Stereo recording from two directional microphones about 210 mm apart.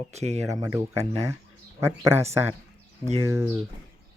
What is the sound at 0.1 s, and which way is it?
Speech, 30° right (ahead or behind).